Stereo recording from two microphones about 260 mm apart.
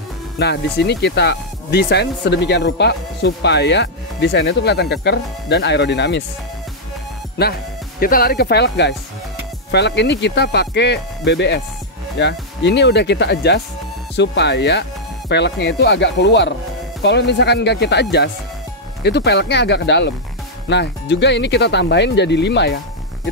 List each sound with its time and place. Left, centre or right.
0.4 s speech: left
8.0 s speech: left